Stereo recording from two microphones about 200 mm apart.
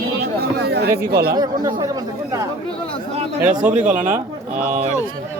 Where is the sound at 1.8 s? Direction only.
15° right (ahead or behind).